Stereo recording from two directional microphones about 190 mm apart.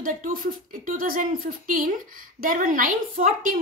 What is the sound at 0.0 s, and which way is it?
A woman's voice, 45° right (ahead or behind).